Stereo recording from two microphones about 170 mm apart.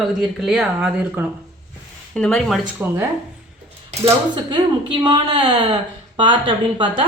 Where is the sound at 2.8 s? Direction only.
15° right (ahead or behind).